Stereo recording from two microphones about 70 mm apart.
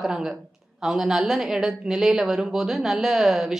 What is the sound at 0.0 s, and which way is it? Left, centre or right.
A woman's voice, centre.